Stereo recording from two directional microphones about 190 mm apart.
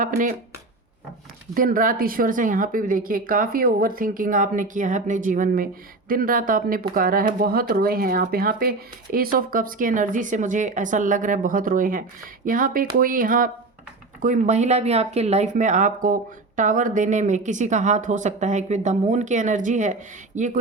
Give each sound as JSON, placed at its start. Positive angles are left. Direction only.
{"t": 0.0, "sound": "speech", "side_deg": -45}
{"t": 1.5, "sound": "speech", "side_deg": -45}